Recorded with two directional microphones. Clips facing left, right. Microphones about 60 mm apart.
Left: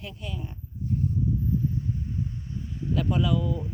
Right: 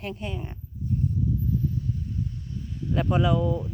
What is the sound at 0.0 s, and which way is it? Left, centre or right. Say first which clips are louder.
Speech: right 4 dB; right.